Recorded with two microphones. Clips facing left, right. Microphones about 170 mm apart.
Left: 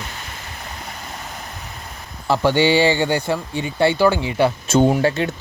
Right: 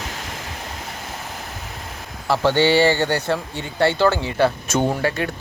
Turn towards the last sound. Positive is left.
turn(degrees=25)  # may be behind; listen again after turning